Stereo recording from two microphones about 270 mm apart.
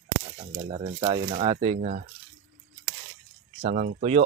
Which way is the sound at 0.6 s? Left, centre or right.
Right.